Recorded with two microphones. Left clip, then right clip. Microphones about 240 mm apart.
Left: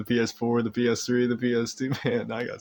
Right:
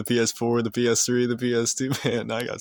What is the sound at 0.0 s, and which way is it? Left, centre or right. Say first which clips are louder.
Speech: right 3 dB; right.